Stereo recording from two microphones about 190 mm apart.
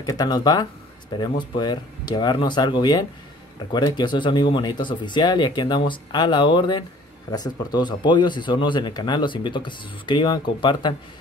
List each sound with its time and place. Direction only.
0.0 s speech: 20° left (ahead or behind)